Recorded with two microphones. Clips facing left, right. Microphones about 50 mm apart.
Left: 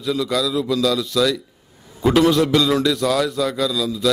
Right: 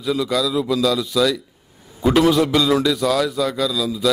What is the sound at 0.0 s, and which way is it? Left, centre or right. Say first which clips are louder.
A man's voice: right 1 dB; centre.